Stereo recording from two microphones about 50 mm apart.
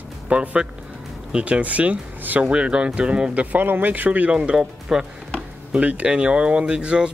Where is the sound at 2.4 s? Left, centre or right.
Centre.